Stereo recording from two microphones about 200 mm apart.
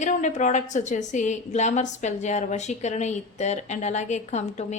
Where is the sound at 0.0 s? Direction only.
35° left (ahead or behind).